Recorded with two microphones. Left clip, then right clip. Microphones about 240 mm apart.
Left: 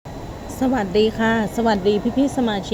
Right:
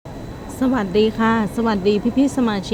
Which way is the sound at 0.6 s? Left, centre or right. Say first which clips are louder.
Even; centre.